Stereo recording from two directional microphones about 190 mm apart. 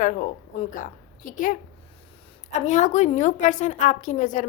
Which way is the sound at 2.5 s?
40° left (ahead or behind).